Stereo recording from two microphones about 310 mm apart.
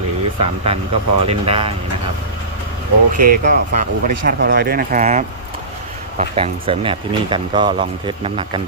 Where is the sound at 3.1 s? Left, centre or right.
Right.